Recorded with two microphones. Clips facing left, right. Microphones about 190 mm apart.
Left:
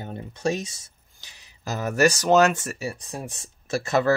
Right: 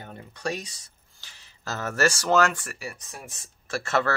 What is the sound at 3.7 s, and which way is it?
Speech, 15° left (ahead or behind).